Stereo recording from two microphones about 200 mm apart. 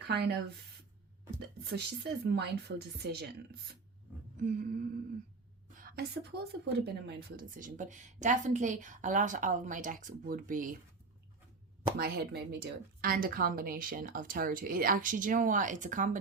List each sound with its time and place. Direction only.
0.1 s a woman's voice: 55° right (ahead or behind)
4.4 s a woman's voice: 40° right (ahead or behind)
5.7 s a sound: 45° right (ahead or behind)
6.8 s a woman's voice: 55° right (ahead or behind)
11.9 s a woman's voice: 50° right (ahead or behind)